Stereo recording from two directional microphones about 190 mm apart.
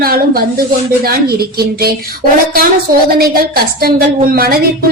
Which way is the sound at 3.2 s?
50° right (ahead or behind).